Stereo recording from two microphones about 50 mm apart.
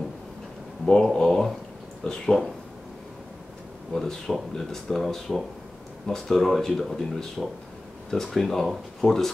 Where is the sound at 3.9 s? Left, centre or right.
Centre.